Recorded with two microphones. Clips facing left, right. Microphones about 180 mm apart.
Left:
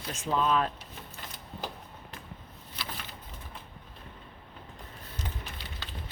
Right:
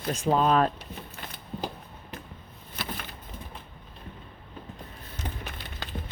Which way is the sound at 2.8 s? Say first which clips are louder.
Right 5 dB; 50° right (ahead or behind).